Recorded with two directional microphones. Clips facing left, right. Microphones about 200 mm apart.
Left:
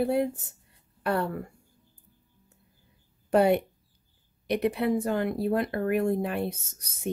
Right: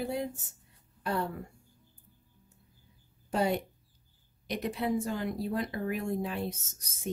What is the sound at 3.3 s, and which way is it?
Speech, 60° left (ahead or behind).